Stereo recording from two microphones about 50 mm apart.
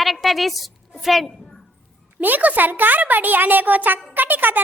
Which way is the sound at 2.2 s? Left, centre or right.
Right.